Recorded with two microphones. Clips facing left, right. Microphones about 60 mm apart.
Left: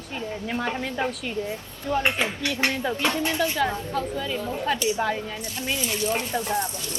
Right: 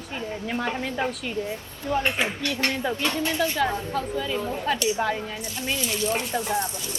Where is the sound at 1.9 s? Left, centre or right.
Right.